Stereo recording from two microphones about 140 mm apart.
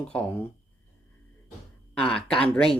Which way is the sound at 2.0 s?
5° left (ahead or behind).